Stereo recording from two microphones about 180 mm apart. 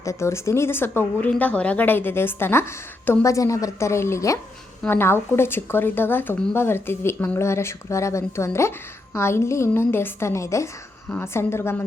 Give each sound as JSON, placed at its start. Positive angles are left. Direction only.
{"t": 0.0, "sound": "speech", "side_deg": 15}